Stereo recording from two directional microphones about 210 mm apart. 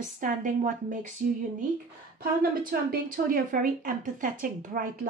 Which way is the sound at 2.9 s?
45° right (ahead or behind).